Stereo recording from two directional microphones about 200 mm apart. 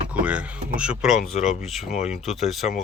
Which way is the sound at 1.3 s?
35° left (ahead or behind).